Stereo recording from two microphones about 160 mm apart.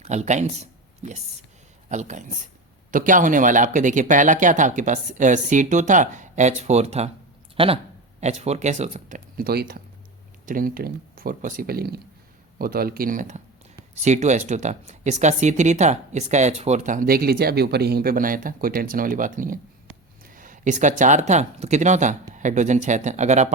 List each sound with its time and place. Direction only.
0.0 s speech: 45° right (ahead or behind); by 9.8 s 70° right (ahead or behind)
10.4 s speech: 60° right (ahead or behind)